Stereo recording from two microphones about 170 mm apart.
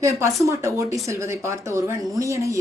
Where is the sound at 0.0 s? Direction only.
15° right (ahead or behind).